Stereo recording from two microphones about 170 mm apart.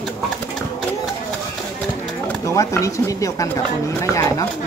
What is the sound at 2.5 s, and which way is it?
Speech, 20° left (ahead or behind).